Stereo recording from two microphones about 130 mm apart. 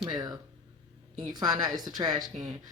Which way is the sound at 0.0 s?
30° right (ahead or behind).